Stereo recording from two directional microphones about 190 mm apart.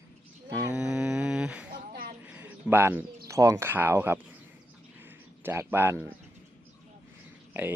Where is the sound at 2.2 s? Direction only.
5° right (ahead or behind).